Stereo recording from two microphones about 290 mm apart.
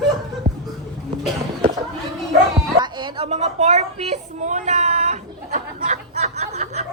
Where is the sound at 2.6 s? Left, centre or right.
Centre.